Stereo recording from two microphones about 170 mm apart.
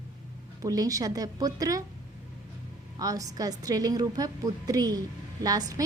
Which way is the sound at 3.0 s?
20° right (ahead or behind).